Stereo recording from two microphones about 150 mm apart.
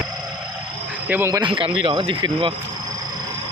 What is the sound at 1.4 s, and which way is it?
Speech, 35° right (ahead or behind).